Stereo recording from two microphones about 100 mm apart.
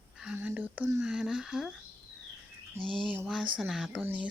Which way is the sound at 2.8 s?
60° right (ahead or behind).